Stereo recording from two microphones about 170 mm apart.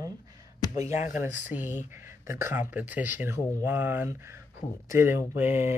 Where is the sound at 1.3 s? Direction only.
10° right (ahead or behind).